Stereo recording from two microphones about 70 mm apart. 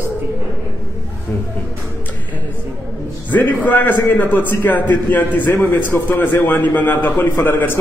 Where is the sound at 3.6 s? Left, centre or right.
Left.